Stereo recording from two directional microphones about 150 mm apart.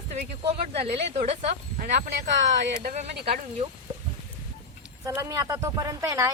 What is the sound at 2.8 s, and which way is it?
Speech, 55° right (ahead or behind).